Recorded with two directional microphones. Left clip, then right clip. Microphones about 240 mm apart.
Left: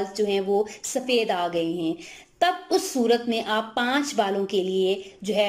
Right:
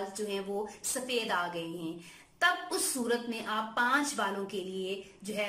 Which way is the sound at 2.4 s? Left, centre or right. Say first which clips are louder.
Left 7 dB; centre.